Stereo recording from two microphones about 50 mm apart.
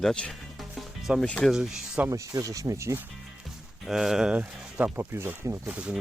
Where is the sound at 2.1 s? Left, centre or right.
Right.